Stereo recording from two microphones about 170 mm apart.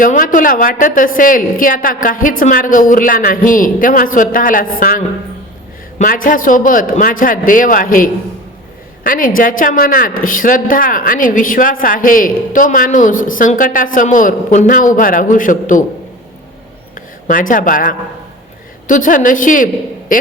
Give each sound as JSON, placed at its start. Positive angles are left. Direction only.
{"t": 0.0, "sound": "a woman's voice", "side_deg": 50}
{"t": 16.9, "sound": "a woman's voice", "side_deg": 50}